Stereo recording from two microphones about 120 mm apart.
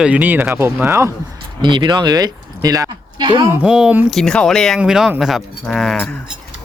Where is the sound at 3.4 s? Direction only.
15° right (ahead or behind).